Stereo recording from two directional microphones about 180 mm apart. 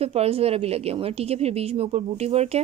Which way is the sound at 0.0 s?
35° right (ahead or behind).